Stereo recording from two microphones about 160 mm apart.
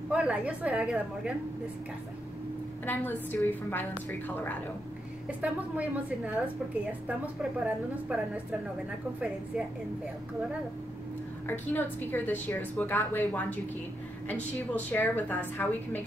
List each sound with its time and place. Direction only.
0.1 s a woman's voice: 5° right (ahead or behind)
2.9 s a woman's voice: 10° left (ahead or behind)
5.4 s a woman's voice: 10° right (ahead or behind)
7.6 s a woman's voice: 10° right (ahead or behind)
11.4 s a woman's voice: 10° left (ahead or behind)
14.9 s a woman's voice: 10° left (ahead or behind)